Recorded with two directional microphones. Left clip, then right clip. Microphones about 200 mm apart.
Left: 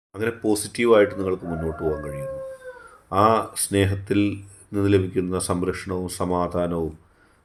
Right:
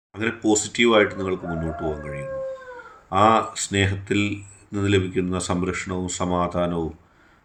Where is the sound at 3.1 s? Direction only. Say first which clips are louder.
Right 1 dB; 35° left (ahead or behind).